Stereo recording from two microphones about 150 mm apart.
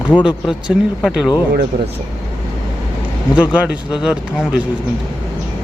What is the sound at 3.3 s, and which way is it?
Speech, 10° right (ahead or behind).